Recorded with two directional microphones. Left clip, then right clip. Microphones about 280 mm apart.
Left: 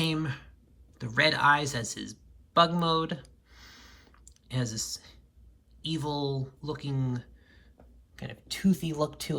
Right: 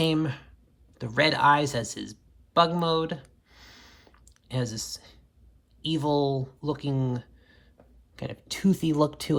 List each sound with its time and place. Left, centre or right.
0.0 s speech: centre
0.9 s a sound: centre
5.8 s speech: centre
8.1 s speech: centre